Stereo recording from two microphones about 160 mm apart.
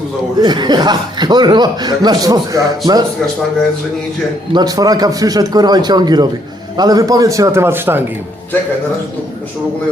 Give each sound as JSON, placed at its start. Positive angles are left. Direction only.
{"t": 0.3, "sound": "speech", "side_deg": -25}
{"t": 4.5, "sound": "speech", "side_deg": -25}